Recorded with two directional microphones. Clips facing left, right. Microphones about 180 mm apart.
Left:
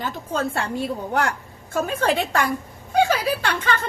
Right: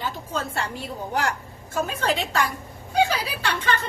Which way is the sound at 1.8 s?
55° left (ahead or behind).